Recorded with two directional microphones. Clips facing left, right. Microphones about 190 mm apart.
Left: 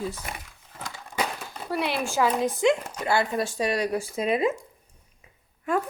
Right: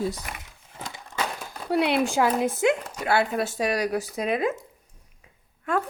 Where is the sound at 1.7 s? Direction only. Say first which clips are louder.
Right 5 dB; 65° right (ahead or behind).